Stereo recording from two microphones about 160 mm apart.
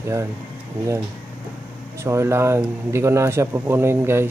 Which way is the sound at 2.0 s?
15° right (ahead or behind).